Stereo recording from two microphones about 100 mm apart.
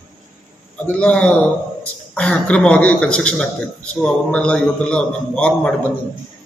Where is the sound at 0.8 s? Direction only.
10° left (ahead or behind).